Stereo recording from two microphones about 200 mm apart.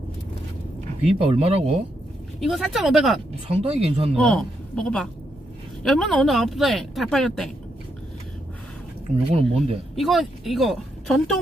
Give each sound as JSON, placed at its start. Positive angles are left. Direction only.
{"t": 1.2, "sound": "speech", "side_deg": -30}
{"t": 2.4, "sound": "speech", "side_deg": 0}
{"t": 3.5, "sound": "speech", "side_deg": -30}
{"t": 4.1, "sound": "a woman's voice", "side_deg": 5}
{"t": 9.3, "sound": "speech", "side_deg": -30}
{"t": 9.9, "sound": "speech", "side_deg": 0}